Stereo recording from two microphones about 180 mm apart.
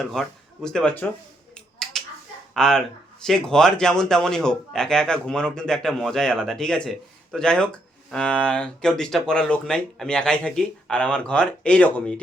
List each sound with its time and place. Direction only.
0.0 s speech: centre (ahead or behind)
1.5 s finger snapping: centre (ahead or behind)
2.6 s speech: 5° left (ahead or behind)